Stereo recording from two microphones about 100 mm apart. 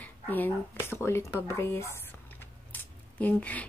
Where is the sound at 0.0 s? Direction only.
20° left (ahead or behind).